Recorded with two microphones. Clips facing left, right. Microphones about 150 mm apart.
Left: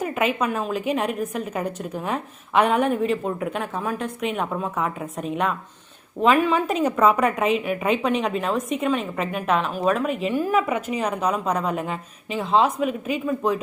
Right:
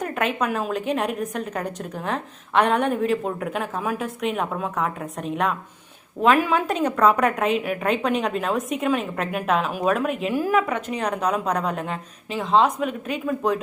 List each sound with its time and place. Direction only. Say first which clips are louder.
0.0 s a woman's voice: left 1 dB; 5° left (ahead or behind)